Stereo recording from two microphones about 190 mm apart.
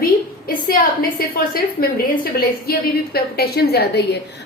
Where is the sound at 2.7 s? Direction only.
55° left (ahead or behind).